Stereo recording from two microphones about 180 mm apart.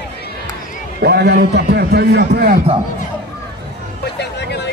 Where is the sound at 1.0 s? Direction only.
60° right (ahead or behind).